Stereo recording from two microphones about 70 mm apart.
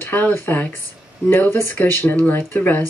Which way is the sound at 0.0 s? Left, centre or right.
Left.